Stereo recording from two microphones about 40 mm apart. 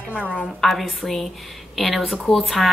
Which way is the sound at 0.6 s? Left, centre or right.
Centre.